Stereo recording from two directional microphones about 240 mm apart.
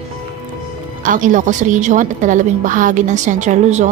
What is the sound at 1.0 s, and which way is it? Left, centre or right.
A woman's voice, right.